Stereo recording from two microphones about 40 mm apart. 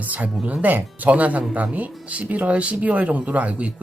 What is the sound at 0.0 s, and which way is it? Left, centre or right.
Speech, right.